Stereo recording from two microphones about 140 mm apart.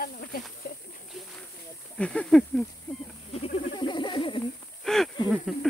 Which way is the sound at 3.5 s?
65° left (ahead or behind).